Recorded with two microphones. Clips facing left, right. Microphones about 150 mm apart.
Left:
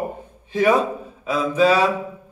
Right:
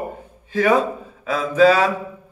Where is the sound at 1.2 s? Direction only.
15° left (ahead or behind).